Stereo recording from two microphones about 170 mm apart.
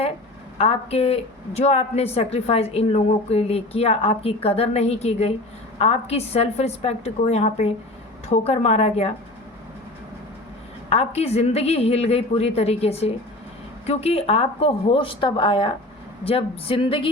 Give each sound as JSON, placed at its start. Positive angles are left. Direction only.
{"t": 0.6, "sound": "a woman's voice", "side_deg": 35}
{"t": 10.8, "sound": "a woman's voice", "side_deg": 35}